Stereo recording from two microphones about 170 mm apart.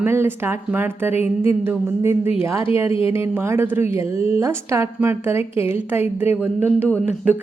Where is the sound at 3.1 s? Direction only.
15° right (ahead or behind).